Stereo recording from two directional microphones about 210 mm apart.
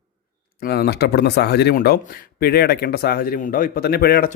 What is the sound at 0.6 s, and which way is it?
A man's voice, 50° left (ahead or behind).